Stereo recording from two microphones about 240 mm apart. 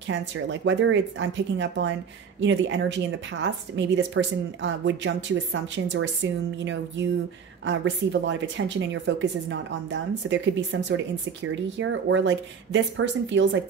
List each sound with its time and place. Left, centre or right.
0.1 s a woman's voice: right